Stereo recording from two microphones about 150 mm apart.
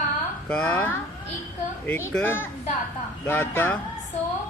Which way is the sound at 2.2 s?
15° left (ahead or behind).